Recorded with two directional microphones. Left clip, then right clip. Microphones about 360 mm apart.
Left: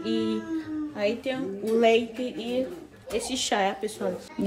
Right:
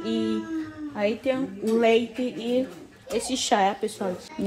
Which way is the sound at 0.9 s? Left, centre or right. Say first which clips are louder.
Right 3 dB; centre.